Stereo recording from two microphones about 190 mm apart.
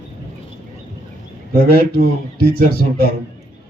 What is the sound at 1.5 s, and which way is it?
A man's voice, 55° left (ahead or behind).